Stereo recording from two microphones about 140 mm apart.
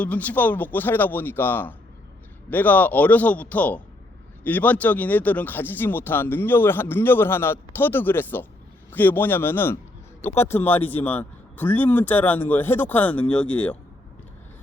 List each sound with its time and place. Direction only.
0.0 s speech: 10° left (ahead or behind)